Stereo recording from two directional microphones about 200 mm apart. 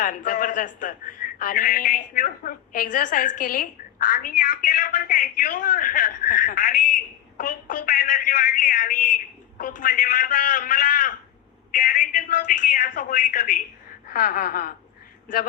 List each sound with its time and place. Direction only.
0.0 s a man's voice: 40° left (ahead or behind)